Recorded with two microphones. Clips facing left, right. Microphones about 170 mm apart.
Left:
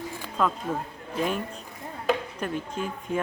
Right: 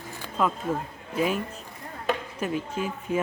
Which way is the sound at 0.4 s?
5° right (ahead or behind).